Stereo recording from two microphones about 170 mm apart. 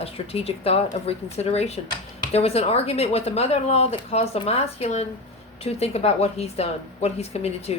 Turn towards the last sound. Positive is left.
turn(degrees=40)  # may be behind; listen again after turning